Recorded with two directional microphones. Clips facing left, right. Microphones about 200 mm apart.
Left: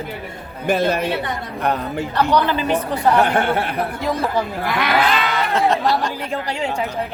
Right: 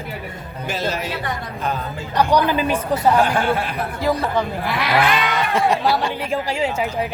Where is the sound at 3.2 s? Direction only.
60° left (ahead or behind).